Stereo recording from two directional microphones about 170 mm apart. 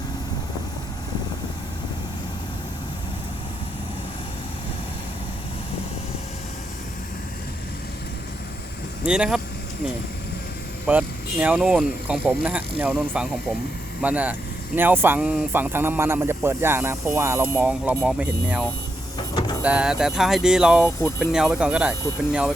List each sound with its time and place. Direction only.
9.0 s speech: 5° right (ahead or behind)
10.8 s speech: 10° right (ahead or behind)
19.3 s vehicle: 25° left (ahead or behind)
19.6 s speech: 5° right (ahead or behind)